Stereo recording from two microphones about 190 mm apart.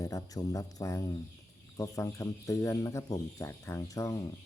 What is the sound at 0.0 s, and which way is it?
Speech, 15° left (ahead or behind).